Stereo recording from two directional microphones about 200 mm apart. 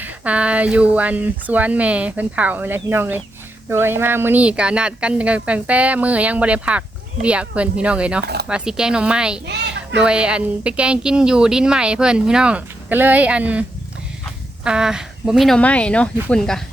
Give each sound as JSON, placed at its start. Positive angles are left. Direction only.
{"t": 0.0, "sound": "a woman's voice", "side_deg": -5}
{"t": 8.2, "sound": "speech", "side_deg": -55}
{"t": 8.4, "sound": "speech", "side_deg": -5}